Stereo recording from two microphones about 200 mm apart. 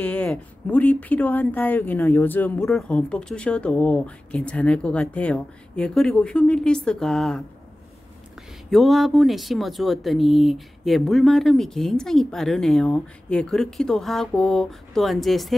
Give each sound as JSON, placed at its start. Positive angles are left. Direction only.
{"t": 0.0, "sound": "speech", "side_deg": 5}
{"t": 8.6, "sound": "speech", "side_deg": 0}